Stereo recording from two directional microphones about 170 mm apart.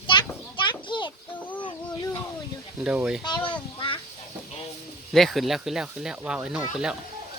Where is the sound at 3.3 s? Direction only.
25° left (ahead or behind).